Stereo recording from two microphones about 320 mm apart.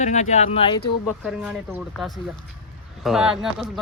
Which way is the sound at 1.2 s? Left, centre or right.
Centre.